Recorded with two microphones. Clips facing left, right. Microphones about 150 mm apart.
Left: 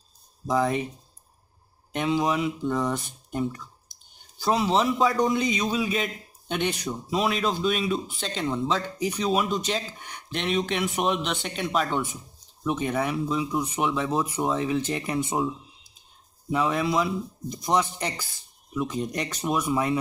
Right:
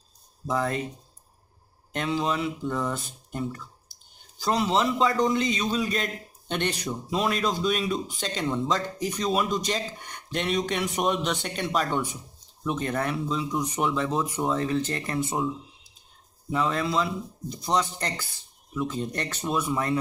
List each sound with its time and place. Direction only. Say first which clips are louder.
0.5 s speech: left 3 dB; 10° left (ahead or behind)
1.9 s speech: left 3 dB; 10° left (ahead or behind)
16.4 s speech: left 2 dB; 10° left (ahead or behind)